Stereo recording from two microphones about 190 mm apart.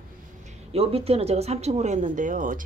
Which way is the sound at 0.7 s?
30° right (ahead or behind).